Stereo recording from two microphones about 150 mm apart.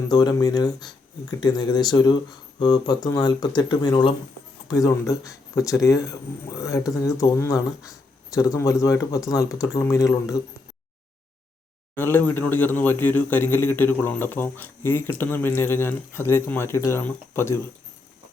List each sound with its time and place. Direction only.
0.1 s speech: 25° left (ahead or behind)
11.9 s a man's voice: 15° left (ahead or behind)